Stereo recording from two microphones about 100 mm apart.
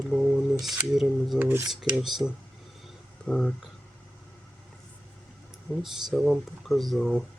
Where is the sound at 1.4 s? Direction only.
25° right (ahead or behind).